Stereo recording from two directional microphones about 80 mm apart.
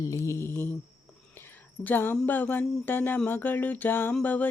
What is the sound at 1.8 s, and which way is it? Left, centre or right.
Speech, left.